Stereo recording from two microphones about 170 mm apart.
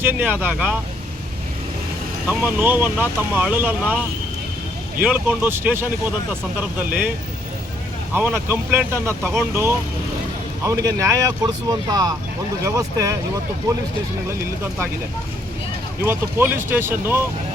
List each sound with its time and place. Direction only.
0.0 s speech: 10° right (ahead or behind)
2.2 s speech: 10° right (ahead or behind)
4.9 s speech: 10° right (ahead or behind)
8.1 s speech: 10° right (ahead or behind)
16.0 s speech: 15° right (ahead or behind)